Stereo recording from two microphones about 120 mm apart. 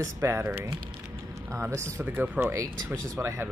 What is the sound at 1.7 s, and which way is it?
Speech, 20° right (ahead or behind).